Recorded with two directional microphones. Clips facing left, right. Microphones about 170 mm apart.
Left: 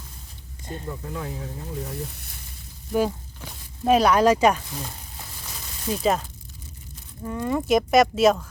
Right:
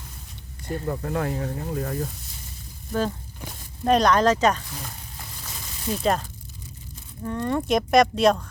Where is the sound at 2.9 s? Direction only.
10° left (ahead or behind).